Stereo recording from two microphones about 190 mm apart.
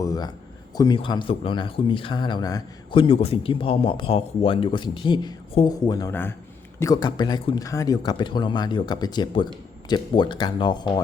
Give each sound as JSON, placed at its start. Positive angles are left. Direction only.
{"t": 0.0, "sound": "speech", "side_deg": 20}